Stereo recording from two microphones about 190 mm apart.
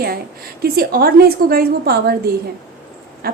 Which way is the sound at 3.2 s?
50° right (ahead or behind).